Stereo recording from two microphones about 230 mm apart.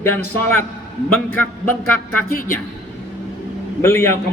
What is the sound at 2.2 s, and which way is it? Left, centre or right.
Speech, left.